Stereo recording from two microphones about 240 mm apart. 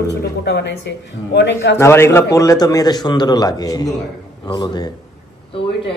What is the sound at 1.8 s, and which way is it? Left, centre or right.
A man's voice, centre.